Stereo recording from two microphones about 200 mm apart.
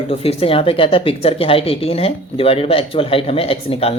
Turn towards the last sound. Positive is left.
turn(degrees=30)  # may be behind; listen again after turning